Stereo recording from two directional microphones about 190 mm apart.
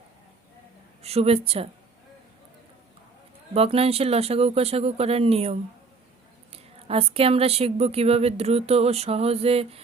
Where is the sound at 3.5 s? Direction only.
30° right (ahead or behind).